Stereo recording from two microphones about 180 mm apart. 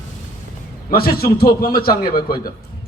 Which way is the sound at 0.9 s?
55° left (ahead or behind).